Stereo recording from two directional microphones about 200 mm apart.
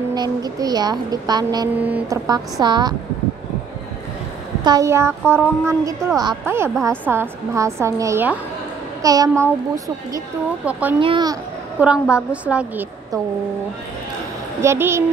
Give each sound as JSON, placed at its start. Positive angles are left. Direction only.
{"t": 0.1, "sound": "speech", "side_deg": -20}
{"t": 1.8, "sound": "a woman's voice", "side_deg": -10}
{"t": 2.6, "sound": "speech", "side_deg": -20}
{"t": 4.6, "sound": "a woman's voice", "side_deg": -15}
{"t": 10.6, "sound": "a woman's voice", "side_deg": -5}
{"t": 11.0, "sound": "speech", "side_deg": -25}
{"t": 11.8, "sound": "a woman's voice", "side_deg": -5}
{"t": 14.6, "sound": "a woman's voice", "side_deg": -15}